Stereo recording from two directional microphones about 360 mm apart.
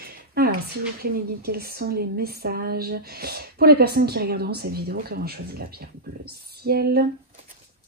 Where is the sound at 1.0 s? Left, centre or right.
Right.